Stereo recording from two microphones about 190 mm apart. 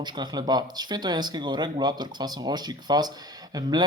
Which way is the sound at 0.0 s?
20° right (ahead or behind).